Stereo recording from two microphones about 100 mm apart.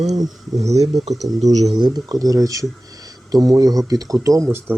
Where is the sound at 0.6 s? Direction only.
90° right.